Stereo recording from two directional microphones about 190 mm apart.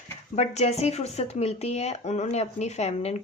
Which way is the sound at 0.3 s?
35° left (ahead or behind).